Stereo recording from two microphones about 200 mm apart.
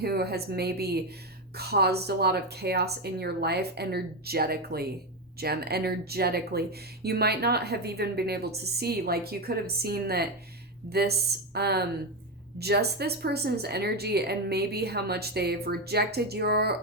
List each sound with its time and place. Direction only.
0.0 s speech: 50° right (ahead or behind)